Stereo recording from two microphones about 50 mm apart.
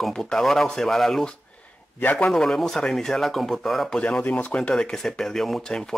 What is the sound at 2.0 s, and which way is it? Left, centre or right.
Speech, left.